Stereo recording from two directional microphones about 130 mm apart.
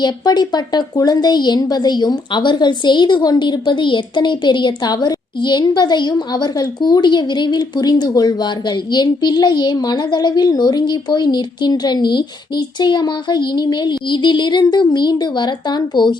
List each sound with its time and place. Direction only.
0.0 s speech: 30° left (ahead or behind)